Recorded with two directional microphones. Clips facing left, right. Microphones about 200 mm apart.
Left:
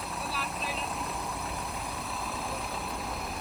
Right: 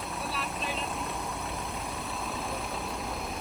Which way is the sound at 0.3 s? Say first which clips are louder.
Right 2 dB; centre (ahead or behind).